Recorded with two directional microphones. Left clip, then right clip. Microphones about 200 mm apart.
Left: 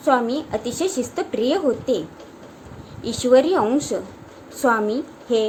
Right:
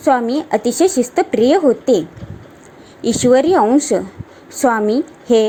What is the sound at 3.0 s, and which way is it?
A woman's voice, 30° right (ahead or behind).